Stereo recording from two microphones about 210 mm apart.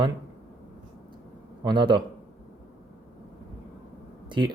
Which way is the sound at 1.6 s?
20° right (ahead or behind).